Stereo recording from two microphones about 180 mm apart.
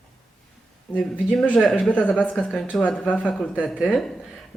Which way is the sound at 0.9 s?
5° left (ahead or behind).